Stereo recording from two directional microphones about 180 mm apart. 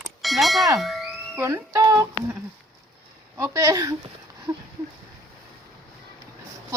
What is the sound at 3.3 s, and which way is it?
Speech, 15° right (ahead or behind).